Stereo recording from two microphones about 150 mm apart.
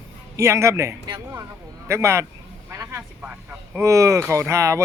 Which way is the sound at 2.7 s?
15° right (ahead or behind).